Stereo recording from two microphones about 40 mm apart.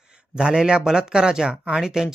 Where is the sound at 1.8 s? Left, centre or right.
Centre.